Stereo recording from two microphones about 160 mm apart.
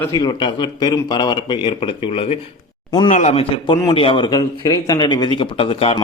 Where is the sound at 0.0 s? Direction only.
25° left (ahead or behind).